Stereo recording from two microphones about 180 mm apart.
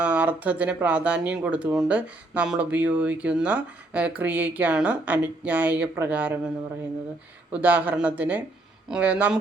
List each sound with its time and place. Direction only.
0.0 s speech: 10° right (ahead or behind)
7.5 s speech: 10° right (ahead or behind)